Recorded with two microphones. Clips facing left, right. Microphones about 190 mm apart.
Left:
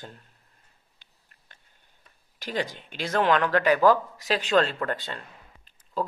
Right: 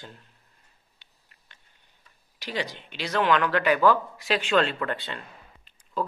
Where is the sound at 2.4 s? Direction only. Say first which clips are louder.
Left 2 dB; 50° left (ahead or behind).